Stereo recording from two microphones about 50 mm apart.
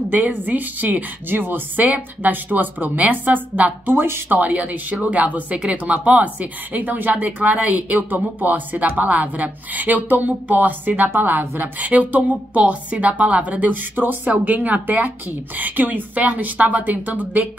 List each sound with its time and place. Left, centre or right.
0.1 s speech: right
3.9 s speech: right
4.4 s speech: right